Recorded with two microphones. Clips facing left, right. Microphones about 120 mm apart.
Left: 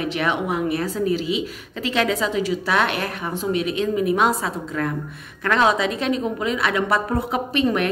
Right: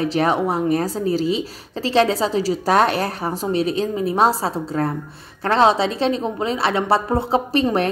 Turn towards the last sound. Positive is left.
turn(degrees=-35)  # may be behind; listen again after turning